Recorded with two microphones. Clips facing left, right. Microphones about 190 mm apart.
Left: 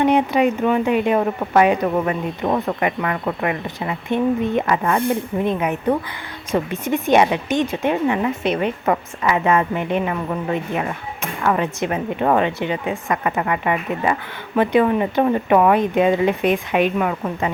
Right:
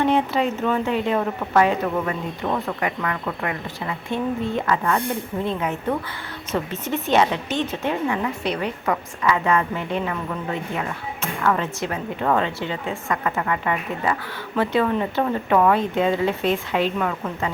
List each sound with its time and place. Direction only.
0.0 s speech: 15° left (ahead or behind)
2.5 s speech: 25° left (ahead or behind)